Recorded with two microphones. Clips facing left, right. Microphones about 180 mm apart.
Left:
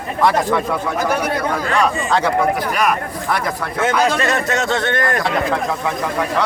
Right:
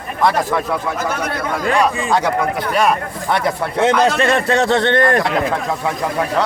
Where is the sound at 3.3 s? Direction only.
25° right (ahead or behind).